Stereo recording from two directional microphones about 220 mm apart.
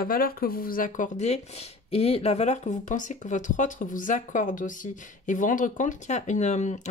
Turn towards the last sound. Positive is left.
turn(degrees=35)  # may be behind; listen again after turning